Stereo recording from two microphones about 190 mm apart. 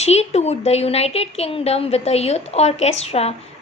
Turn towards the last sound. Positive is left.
turn(degrees=35)  # may be behind; listen again after turning